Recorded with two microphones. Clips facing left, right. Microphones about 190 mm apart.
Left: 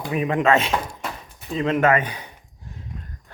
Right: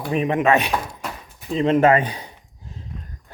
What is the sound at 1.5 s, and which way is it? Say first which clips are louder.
Speech: right 3 dB; 30° right (ahead or behind).